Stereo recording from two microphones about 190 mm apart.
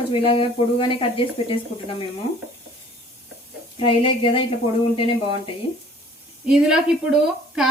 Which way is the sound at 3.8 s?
25° left (ahead or behind).